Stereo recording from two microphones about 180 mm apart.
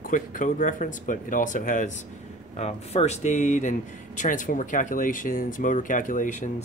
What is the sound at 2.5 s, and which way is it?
Speech, 35° left (ahead or behind).